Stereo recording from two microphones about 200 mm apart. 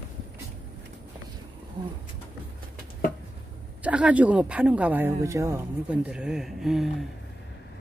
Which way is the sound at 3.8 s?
5° right (ahead or behind).